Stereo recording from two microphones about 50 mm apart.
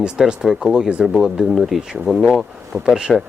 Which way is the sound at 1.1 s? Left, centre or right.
Centre.